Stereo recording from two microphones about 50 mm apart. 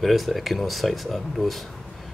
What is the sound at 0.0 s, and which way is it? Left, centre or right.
Speech, centre.